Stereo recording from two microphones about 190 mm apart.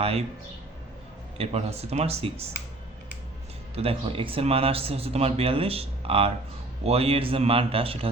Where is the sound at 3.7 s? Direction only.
30° right (ahead or behind).